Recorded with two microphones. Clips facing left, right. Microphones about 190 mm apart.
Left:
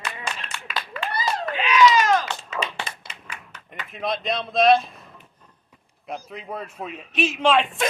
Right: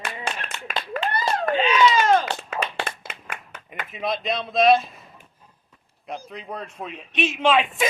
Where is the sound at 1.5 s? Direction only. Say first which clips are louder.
Left 1 dB; 30° right (ahead or behind).